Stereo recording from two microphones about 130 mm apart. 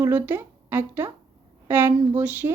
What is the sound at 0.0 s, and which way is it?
A woman's voice, 15° right (ahead or behind).